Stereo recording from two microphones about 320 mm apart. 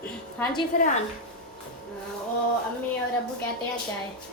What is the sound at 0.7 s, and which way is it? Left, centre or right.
Speech, left.